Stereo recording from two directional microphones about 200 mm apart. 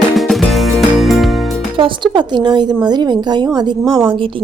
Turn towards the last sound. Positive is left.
turn(degrees=-25)  # may be behind; listen again after turning